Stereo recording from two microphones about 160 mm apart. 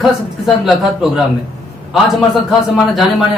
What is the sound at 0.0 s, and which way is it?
A man's voice, centre (ahead or behind).